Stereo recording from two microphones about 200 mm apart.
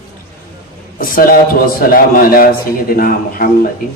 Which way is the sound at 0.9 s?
45° left (ahead or behind).